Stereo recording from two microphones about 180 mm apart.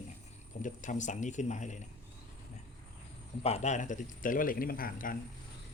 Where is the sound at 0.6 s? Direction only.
45° left (ahead or behind).